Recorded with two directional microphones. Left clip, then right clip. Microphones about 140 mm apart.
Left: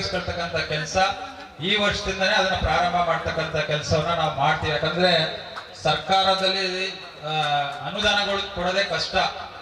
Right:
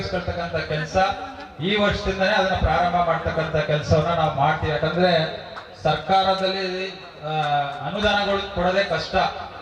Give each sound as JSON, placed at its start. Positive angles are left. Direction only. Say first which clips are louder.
{"t": 0.0, "sound": "a man's voice", "louder": "even", "side_deg": -5}